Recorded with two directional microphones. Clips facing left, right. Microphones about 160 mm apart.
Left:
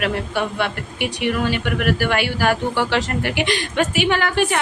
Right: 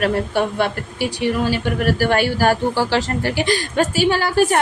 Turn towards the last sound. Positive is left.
turn(degrees=-35)  # may be behind; listen again after turning